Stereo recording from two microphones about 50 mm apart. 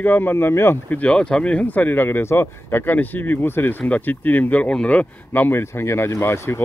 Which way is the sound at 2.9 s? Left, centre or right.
Left.